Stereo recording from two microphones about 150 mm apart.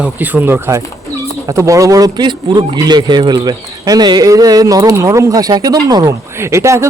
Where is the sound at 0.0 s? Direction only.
10° right (ahead or behind).